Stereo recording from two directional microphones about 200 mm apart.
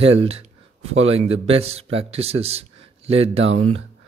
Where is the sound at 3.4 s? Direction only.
80° right.